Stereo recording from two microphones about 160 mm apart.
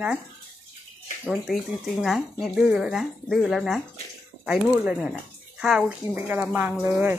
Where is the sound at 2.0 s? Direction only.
Centre (ahead or behind).